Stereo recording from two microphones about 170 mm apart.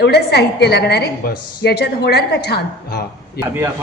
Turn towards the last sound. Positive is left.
turn(degrees=-10)  # may be behind; listen again after turning